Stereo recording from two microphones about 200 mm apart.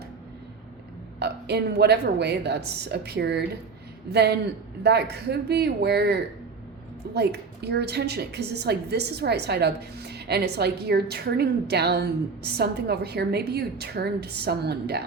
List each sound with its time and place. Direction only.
1.2 s a woman's voice: 55° right (ahead or behind)